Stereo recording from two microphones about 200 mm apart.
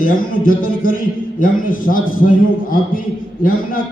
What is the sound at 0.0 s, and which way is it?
A man's voice, 45° left (ahead or behind).